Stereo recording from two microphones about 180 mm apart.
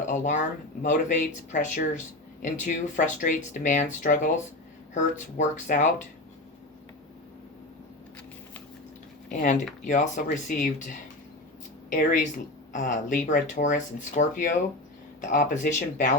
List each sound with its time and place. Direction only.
0.1 s speech: 45° left (ahead or behind)
9.3 s speech: 40° left (ahead or behind)
15.3 s speech: 45° left (ahead or behind)